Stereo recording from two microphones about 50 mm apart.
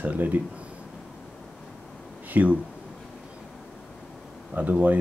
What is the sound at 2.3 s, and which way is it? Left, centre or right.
Speech, right.